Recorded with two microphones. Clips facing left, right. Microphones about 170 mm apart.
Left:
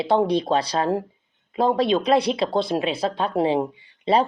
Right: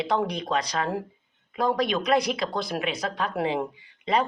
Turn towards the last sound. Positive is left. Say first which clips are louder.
# left 5 dB
turn(degrees=30)  # may be behind; listen again after turning